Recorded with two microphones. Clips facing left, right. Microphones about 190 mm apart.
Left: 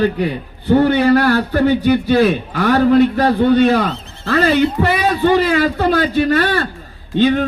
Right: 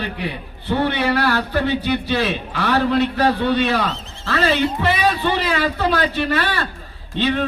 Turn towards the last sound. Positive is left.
turn(degrees=45)  # may be behind; listen again after turning